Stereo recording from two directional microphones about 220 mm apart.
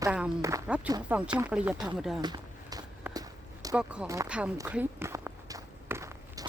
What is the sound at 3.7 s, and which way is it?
Walk, 5° right (ahead or behind).